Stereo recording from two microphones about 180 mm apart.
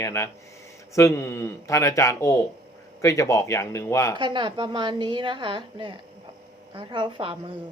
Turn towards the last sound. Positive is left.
turn(degrees=-30)  # may be behind; listen again after turning